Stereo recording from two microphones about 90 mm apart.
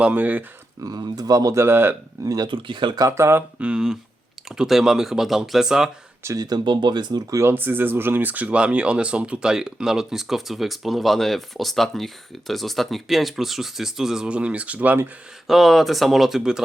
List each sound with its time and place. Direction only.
0.0 s speech: 15° right (ahead or behind)
0.8 s speech: 45° right (ahead or behind)
1.6 s speech: 25° right (ahead or behind)
2.2 s speech: 45° right (ahead or behind)
2.5 s speech: 65° right (ahead or behind)
3.1 s speech: 30° right (ahead or behind)
3.6 s speech: 10° right (ahead or behind)
6.2 s speech: 45° right (ahead or behind)
7.3 s speech: 25° right (ahead or behind)
15.4 s speech: centre (ahead or behind)